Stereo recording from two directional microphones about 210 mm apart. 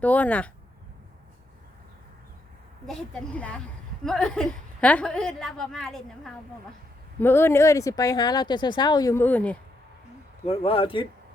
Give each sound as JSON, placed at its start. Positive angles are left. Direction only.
{"t": 0.0, "sound": "speech", "side_deg": 5}
{"t": 2.8, "sound": "a woman's voice", "side_deg": 5}
{"t": 10.4, "sound": "speech", "side_deg": 30}